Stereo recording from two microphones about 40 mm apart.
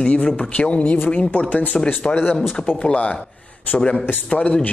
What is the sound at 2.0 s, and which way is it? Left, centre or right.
Speech, left.